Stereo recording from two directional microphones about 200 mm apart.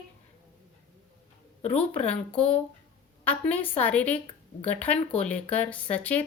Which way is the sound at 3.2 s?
5° left (ahead or behind).